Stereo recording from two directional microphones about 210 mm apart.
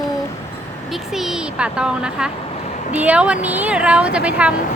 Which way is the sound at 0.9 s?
Centre (ahead or behind).